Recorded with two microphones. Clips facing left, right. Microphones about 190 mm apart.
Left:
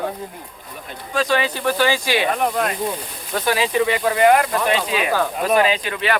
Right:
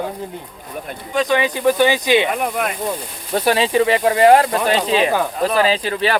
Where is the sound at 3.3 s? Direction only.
30° right (ahead or behind).